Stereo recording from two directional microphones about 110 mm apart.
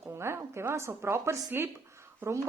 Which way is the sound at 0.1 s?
25° right (ahead or behind).